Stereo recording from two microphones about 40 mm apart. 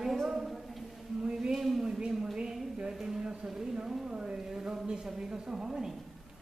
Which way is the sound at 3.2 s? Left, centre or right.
Right.